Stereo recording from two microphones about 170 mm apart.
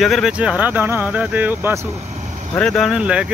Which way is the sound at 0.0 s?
Centre (ahead or behind).